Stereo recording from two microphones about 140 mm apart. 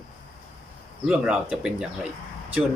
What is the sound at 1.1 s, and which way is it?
Speech, 10° right (ahead or behind).